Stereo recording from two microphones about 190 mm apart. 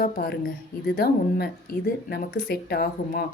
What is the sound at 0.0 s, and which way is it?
Speech, 55° left (ahead or behind).